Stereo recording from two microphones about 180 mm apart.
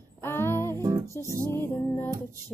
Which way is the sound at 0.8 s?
20° right (ahead or behind).